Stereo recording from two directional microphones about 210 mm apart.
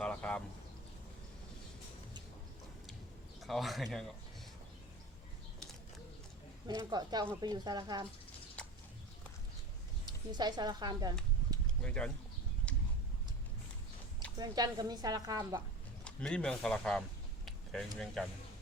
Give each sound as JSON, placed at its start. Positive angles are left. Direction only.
{"t": 0.0, "sound": "a sound", "side_deg": 5}
{"t": 3.4, "sound": "speech", "side_deg": 0}
{"t": 6.7, "sound": "a woman's voice", "side_deg": -20}
{"t": 8.6, "sound": "a sound", "side_deg": 5}
{"t": 10.1, "sound": "a woman's voice", "side_deg": -20}
{"t": 11.6, "sound": "a sound", "side_deg": 5}
{"t": 14.3, "sound": "a woman's voice", "side_deg": -20}
{"t": 16.0, "sound": "speech", "side_deg": 5}
{"t": 17.4, "sound": "vehicle", "side_deg": 0}
{"t": 17.9, "sound": "speech", "side_deg": 0}